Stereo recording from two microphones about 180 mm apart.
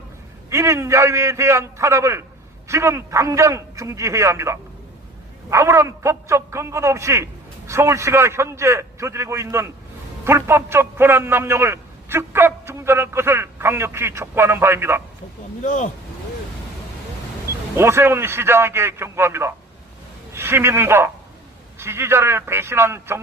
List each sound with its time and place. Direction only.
0.5 s a man's voice: 15° right (ahead or behind)
15.6 s speech: 45° left (ahead or behind)
17.7 s a man's voice: 15° right (ahead or behind)